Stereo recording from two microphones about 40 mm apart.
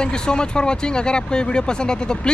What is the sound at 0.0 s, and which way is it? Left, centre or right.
Speech, left.